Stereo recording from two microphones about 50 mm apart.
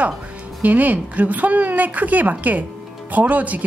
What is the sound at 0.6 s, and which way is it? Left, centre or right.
Speech, right.